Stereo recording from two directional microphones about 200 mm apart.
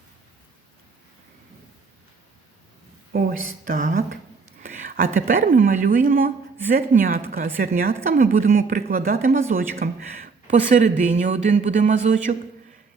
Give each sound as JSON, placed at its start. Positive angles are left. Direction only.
{"t": 3.1, "sound": "a woman's voice", "side_deg": -45}